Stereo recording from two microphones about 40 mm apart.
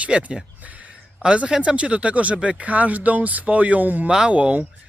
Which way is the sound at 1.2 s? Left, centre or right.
Right.